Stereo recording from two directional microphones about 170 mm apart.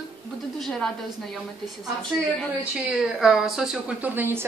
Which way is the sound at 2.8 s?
Centre (ahead or behind).